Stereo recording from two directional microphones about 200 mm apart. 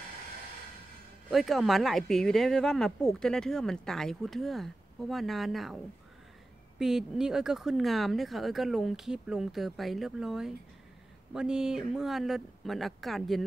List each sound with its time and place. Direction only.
1.3 s speech: centre (ahead or behind)
6.8 s speech: centre (ahead or behind)